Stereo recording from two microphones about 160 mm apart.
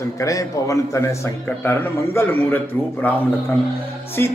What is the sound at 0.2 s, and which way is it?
A man's voice, 20° left (ahead or behind).